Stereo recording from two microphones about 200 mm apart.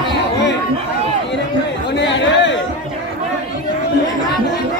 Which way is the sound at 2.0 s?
60° left (ahead or behind).